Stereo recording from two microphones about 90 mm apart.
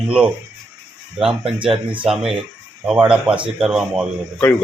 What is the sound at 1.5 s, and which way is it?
Speech, 65° right (ahead or behind).